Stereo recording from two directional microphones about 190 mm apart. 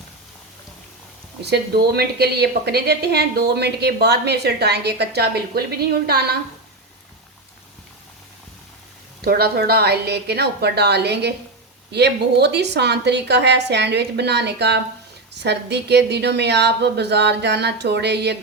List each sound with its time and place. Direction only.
1.5 s speech: 60° right (ahead or behind)
9.2 s speech: 55° right (ahead or behind)